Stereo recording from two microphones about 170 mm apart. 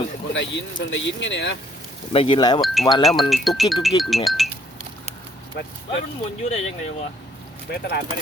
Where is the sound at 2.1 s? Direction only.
30° left (ahead or behind).